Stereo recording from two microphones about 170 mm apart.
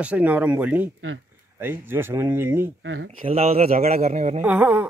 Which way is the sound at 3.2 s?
35° right (ahead or behind).